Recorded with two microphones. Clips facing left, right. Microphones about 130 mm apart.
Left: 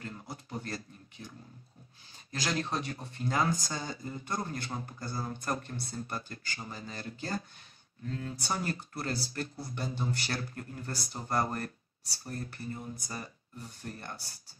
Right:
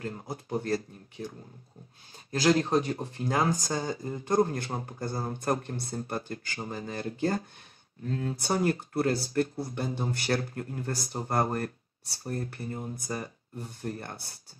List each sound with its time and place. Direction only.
0.0 s speech: 45° right (ahead or behind)
2.3 s speech: 40° right (ahead or behind)
8.0 s speech: 40° right (ahead or behind); by 14.4 s 55° right (ahead or behind)